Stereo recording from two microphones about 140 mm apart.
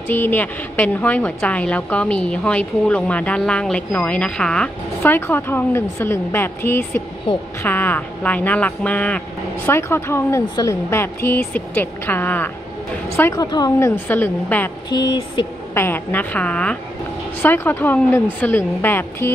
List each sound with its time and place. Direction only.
0.1 s a woman's voice: 15° left (ahead or behind)
14.9 s speech: 30° left (ahead or behind)
15.7 s a woman's voice: 15° left (ahead or behind)